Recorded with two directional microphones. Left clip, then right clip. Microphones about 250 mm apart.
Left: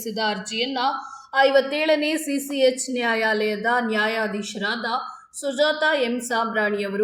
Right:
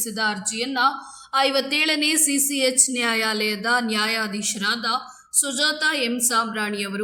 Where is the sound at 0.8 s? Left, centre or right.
Right.